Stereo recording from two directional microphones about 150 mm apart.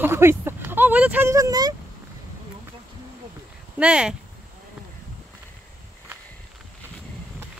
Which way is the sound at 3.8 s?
5° right (ahead or behind).